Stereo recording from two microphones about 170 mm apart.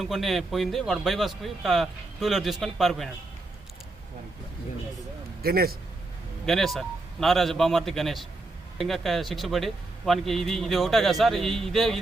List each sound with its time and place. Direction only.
0.0 s a man's voice: centre (ahead or behind)
5.4 s speech: 65° right (ahead or behind)
6.4 s a man's voice: centre (ahead or behind)